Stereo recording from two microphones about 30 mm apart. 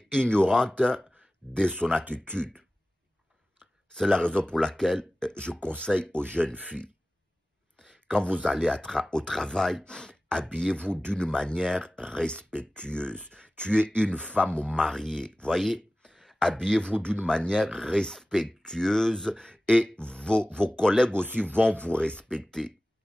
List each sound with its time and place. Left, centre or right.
0.1 s speech: left
3.9 s speech: left
5.9 s speech: right
6.4 s speech: centre
7.8 s a sound: left
8.6 s speech: left
9.8 s speech: left
11.3 s speech: left
14.8 s speech: centre; by 22.5 s left